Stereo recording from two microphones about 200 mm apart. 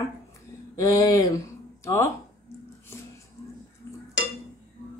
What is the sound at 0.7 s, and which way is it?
Speech, 15° left (ahead or behind).